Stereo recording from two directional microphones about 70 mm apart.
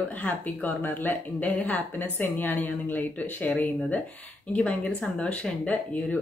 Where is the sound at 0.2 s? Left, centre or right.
Left.